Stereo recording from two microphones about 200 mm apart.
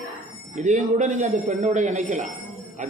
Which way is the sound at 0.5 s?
35° right (ahead or behind).